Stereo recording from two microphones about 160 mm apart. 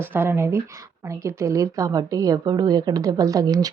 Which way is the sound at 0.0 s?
15° right (ahead or behind).